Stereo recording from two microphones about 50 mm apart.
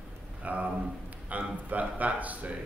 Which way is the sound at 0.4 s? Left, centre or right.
Right.